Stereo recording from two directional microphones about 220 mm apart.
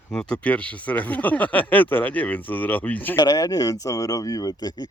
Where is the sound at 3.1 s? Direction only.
20° left (ahead or behind).